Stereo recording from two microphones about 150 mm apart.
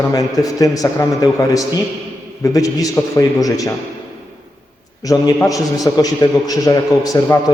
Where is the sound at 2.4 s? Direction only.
25° left (ahead or behind).